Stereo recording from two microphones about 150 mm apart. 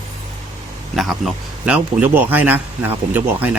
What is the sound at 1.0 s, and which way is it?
Speech, centre (ahead or behind).